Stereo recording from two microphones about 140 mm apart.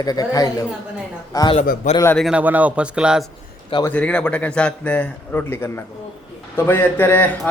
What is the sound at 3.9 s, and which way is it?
A man's voice, 10° left (ahead or behind).